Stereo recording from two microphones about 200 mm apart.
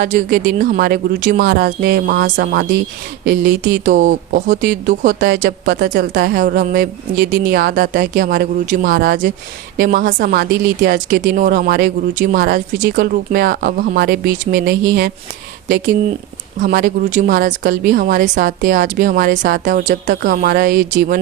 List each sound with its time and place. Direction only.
0.0 s speech: 40° right (ahead or behind)
3.2 s speech: 65° right (ahead or behind)
3.8 s speech: 40° right (ahead or behind)
10.8 s speech: 65° right (ahead or behind)
11.2 s speech: 45° right (ahead or behind)
16.6 s speech: 40° right (ahead or behind)
17.6 s speech: 60° right (ahead or behind)
17.9 s speech: 40° right (ahead or behind)
20.7 s speech: 65° right (ahead or behind)